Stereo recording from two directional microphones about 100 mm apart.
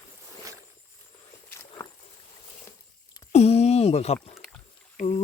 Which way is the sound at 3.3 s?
90° left.